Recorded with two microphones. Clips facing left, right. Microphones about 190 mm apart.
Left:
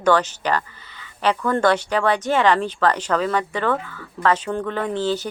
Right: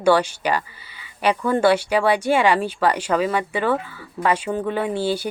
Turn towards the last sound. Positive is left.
turn(degrees=-10)  # may be behind; listen again after turning